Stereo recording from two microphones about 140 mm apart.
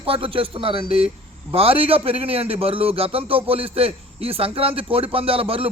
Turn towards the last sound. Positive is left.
turn(degrees=-40)  # may be behind; listen again after turning